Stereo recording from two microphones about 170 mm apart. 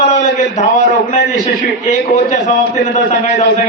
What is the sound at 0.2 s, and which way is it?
A man's voice, 45° left (ahead or behind).